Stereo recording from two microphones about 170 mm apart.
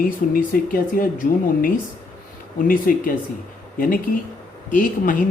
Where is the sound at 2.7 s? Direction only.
55° left (ahead or behind).